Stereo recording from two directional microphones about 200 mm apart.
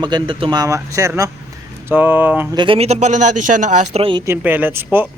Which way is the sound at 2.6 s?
30° right (ahead or behind).